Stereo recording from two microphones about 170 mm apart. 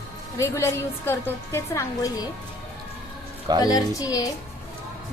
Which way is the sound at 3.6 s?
20° left (ahead or behind).